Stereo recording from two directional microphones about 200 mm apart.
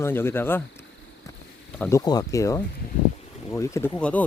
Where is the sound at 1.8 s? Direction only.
15° left (ahead or behind).